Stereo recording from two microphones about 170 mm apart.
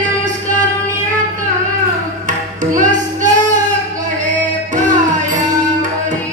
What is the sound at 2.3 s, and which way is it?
Music, 45° right (ahead or behind).